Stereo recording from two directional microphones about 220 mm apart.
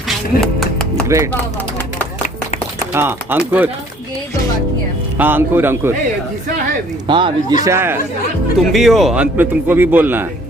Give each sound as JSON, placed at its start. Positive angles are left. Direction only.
{"t": 0.6, "sound": "music", "side_deg": 5}
{"t": 1.0, "sound": "speech", "side_deg": -15}
{"t": 2.9, "sound": "a man's voice", "side_deg": -10}
{"t": 5.1, "sound": "a man's voice", "side_deg": -10}
{"t": 7.1, "sound": "speech", "side_deg": -20}
{"t": 7.6, "sound": "a man's voice", "side_deg": -10}
{"t": 8.7, "sound": "a man's voice", "side_deg": 0}